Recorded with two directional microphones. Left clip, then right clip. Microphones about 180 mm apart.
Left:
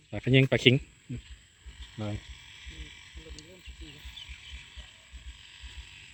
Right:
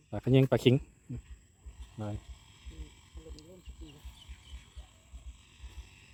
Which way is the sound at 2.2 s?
70° right (ahead or behind).